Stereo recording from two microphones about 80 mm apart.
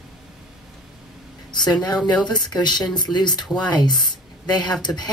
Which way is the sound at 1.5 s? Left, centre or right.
Left.